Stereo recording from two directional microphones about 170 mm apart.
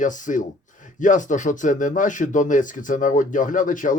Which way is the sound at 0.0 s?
50° left (ahead or behind).